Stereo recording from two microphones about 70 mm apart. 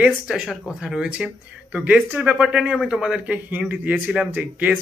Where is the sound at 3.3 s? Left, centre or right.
Right.